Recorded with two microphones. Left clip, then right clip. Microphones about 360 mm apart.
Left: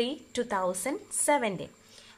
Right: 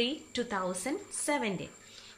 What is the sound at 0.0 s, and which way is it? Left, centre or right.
A woman's voice, centre.